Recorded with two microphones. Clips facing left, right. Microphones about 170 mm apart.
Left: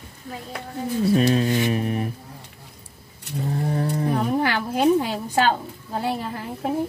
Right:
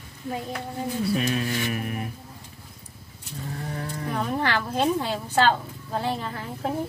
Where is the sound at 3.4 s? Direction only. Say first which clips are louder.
Left 9 dB; 35° left (ahead or behind).